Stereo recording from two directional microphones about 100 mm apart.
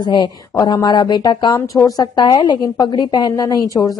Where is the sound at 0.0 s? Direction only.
45° left (ahead or behind).